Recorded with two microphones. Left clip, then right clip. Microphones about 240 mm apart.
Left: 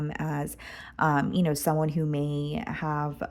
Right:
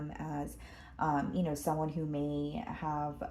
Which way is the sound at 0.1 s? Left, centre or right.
Left.